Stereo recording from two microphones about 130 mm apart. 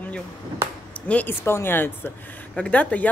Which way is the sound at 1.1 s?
15° left (ahead or behind).